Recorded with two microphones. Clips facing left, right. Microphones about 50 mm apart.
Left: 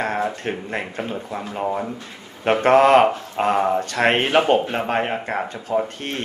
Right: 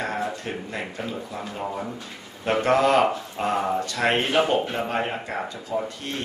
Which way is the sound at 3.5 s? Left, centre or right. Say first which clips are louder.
Left 4 dB; left.